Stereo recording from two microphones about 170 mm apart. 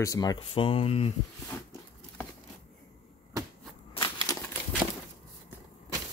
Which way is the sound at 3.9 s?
25° left (ahead or behind).